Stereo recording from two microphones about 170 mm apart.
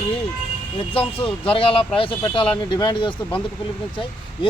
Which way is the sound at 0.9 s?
30° left (ahead or behind).